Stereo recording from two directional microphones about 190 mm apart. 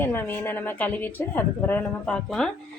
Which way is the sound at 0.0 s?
10° left (ahead or behind).